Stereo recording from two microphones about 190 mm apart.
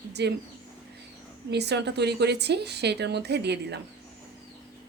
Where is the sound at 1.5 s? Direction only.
60° right (ahead or behind).